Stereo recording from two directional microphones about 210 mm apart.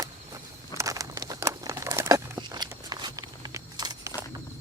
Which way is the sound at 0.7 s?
15° right (ahead or behind).